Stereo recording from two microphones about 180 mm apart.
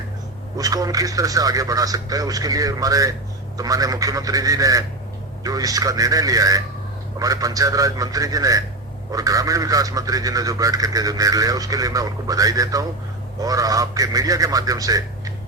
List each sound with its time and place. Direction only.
0.5 s speech: 20° right (ahead or behind)